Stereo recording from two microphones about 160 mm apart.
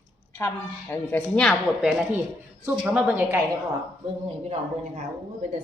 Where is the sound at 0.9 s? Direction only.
10° left (ahead or behind); by 3.4 s 10° right (ahead or behind).